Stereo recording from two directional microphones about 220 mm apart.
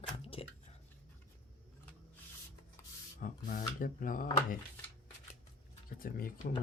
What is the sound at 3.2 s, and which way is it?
Speech, 40° left (ahead or behind).